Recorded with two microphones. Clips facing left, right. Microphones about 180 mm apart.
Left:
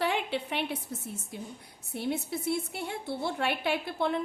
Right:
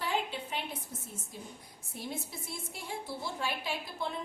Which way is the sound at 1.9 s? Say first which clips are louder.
Left 9 dB; 65° left (ahead or behind).